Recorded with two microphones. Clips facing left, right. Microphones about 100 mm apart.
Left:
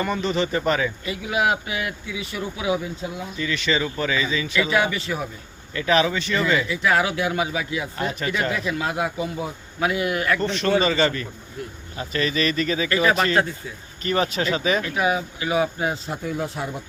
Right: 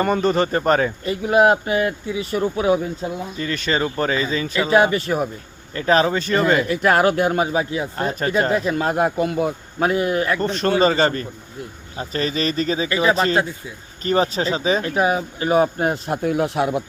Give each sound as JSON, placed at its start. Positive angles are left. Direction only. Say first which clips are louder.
{"t": 0.0, "sound": "speech", "louder": "right 5 dB", "side_deg": -45}
{"t": 9.8, "sound": "speech", "louder": "right 4 dB", "side_deg": -40}
{"t": 10.4, "sound": "speech", "louder": "right 4 dB", "side_deg": -45}